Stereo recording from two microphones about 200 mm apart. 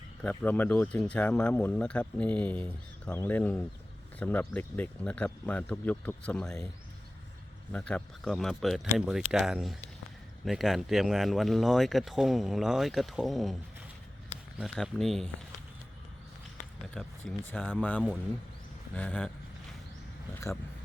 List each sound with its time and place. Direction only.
0.2 s speech: 5° left (ahead or behind)
7.7 s speech: 5° left (ahead or behind)
14.6 s speech: centre (ahead or behind)
16.9 s speech: centre (ahead or behind)